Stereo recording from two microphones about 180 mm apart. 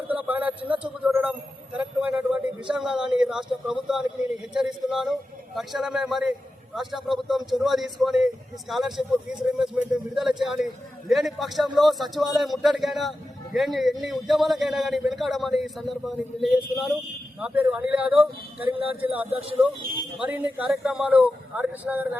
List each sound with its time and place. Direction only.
0.1 s a sound: 10° right (ahead or behind)
4.5 s a man's voice: centre (ahead or behind)
18.1 s speech: 30° right (ahead or behind)
18.9 s speech: 10° right (ahead or behind)